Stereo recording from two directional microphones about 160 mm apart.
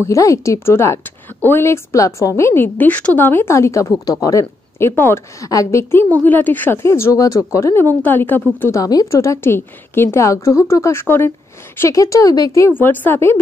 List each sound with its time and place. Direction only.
0.0 s a woman's voice: 20° left (ahead or behind)